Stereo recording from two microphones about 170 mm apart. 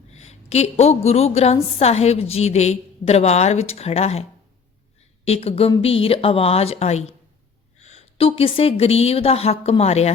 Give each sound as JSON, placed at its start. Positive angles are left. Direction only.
{"t": 0.1, "sound": "a woman's voice", "side_deg": 40}
{"t": 5.2, "sound": "a woman's voice", "side_deg": 35}